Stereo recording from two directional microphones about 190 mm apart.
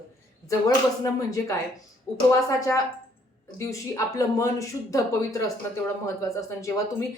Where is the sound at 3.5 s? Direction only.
15° left (ahead or behind).